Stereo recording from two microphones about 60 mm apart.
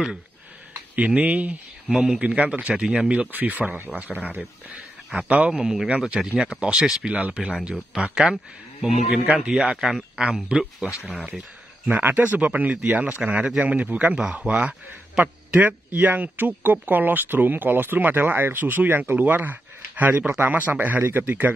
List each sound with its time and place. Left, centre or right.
0.9 s speech: right
1.9 s speech: centre; by 2.7 s right
2.7 s speech: centre
3.1 s a man's voice: right
5.5 s speech: centre
5.9 s speech: right
9.2 s speech: centre
11.2 s a sound: right
12.0 s a man's voice: right